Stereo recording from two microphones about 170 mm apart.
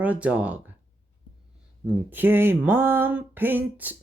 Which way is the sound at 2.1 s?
10° right (ahead or behind).